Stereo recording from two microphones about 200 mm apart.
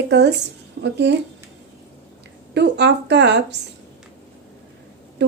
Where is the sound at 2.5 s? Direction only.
60° right (ahead or behind).